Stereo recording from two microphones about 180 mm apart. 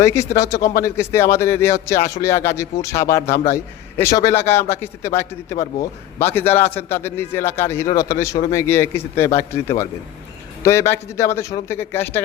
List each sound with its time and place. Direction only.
0.0 s a man's voice: 15° left (ahead or behind)